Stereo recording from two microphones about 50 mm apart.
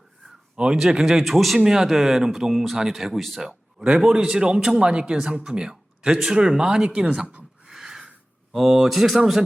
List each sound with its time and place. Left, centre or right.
0.5 s speech: centre
3.4 s speech: centre
7.7 s a sound: centre
8.5 s speech: centre